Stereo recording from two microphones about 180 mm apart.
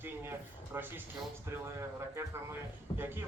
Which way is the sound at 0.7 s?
10° right (ahead or behind).